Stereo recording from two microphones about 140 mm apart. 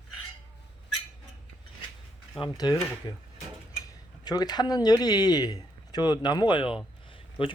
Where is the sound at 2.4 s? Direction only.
30° left (ahead or behind).